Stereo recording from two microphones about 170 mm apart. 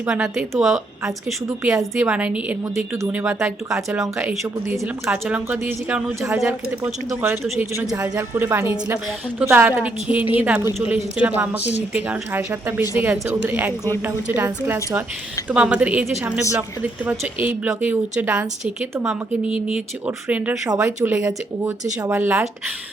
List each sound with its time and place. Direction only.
0.0 s a woman's voice: 5° right (ahead or behind)
3.8 s a woman's voice: 20° right (ahead or behind)
5.0 s a woman's voice: 5° right (ahead or behind)